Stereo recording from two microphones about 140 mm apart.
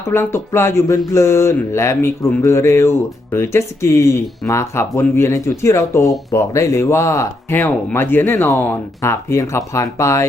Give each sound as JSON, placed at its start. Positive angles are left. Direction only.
{"t": 0.0, "sound": "speech", "side_deg": 20}